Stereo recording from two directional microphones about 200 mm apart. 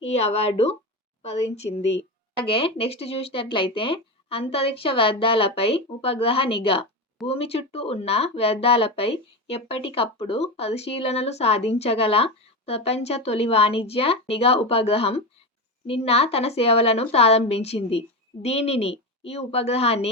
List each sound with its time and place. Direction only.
0.0 s speech: 30° left (ahead or behind)